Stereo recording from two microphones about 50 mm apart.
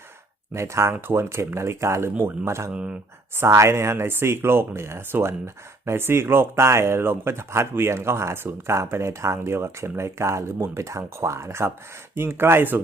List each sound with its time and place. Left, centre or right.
0.5 s speech: right
2.1 s speech: right
2.7 s speech: right
3.3 s speech: right
12.1 s speech: right